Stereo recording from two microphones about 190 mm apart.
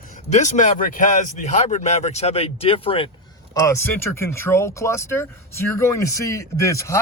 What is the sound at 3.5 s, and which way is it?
Speech, 15° left (ahead or behind).